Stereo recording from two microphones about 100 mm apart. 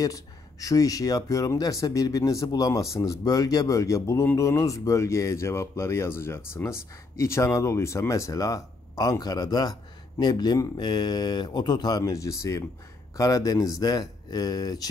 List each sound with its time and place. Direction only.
0.0 s speech: 35° left (ahead or behind)
12.0 s speech: 35° left (ahead or behind)